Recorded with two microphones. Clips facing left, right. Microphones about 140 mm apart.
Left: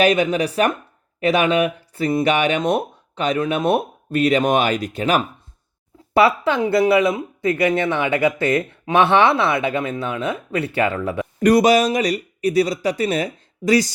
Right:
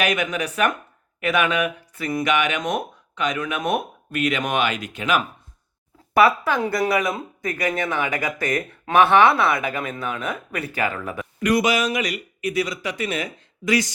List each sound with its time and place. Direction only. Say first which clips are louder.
0.0 s speech: left 7 dB; 30° left (ahead or behind)
6.1 s speech: left 2 dB; 25° left (ahead or behind)